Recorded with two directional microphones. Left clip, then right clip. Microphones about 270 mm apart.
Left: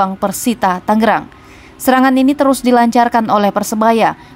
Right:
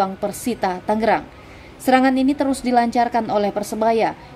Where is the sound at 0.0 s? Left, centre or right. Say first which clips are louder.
Left 6 dB; left.